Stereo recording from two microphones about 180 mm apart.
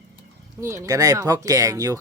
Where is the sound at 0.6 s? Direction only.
15° right (ahead or behind).